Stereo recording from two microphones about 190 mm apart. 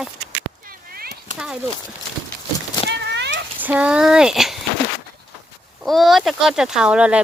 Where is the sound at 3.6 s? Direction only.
10° right (ahead or behind).